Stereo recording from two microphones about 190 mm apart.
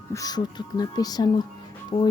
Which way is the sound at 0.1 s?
20° left (ahead or behind).